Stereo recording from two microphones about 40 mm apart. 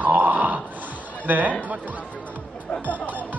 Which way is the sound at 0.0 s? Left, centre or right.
Right.